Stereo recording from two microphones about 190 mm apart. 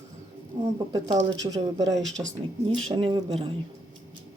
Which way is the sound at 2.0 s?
Centre (ahead or behind).